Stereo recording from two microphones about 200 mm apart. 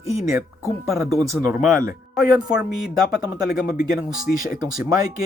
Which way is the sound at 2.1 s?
5° right (ahead or behind).